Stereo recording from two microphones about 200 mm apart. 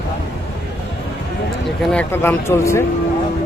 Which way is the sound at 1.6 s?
5° left (ahead or behind).